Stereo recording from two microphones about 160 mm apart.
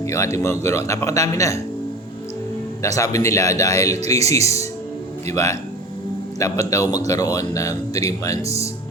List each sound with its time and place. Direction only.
0.0 s speech: 20° left (ahead or behind)
2.8 s speech: 20° left (ahead or behind)